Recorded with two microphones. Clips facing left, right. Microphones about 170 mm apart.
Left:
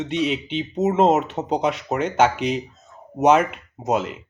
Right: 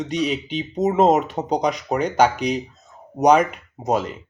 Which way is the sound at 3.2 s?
5° left (ahead or behind).